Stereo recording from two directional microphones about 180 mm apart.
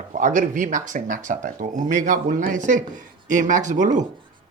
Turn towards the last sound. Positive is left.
turn(degrees=-45)  # may be behind; listen again after turning